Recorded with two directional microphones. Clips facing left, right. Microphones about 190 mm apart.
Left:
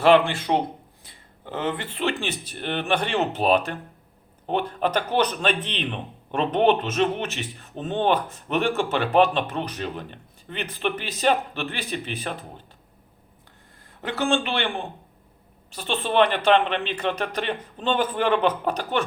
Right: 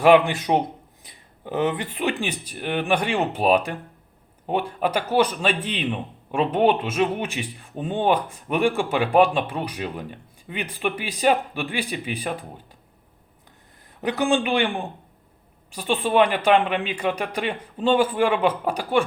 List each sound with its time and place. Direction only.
0.0 s a man's voice: 15° right (ahead or behind)
14.0 s a man's voice: 15° right (ahead or behind)